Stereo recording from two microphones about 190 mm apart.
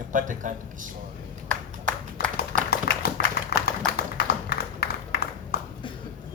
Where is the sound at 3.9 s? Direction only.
55° left (ahead or behind).